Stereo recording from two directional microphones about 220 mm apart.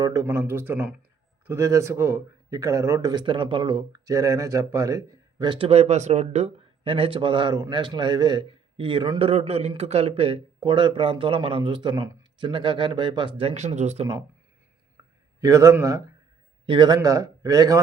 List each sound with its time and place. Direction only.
0.0 s a man's voice: 15° right (ahead or behind)
14.9 s a sound: 15° right (ahead or behind)
16.6 s a man's voice: 20° right (ahead or behind)